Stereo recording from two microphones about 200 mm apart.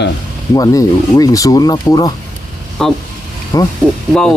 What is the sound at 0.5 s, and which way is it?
Speech, 15° left (ahead or behind).